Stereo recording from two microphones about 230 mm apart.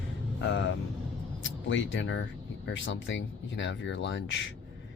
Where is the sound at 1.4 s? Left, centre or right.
Left.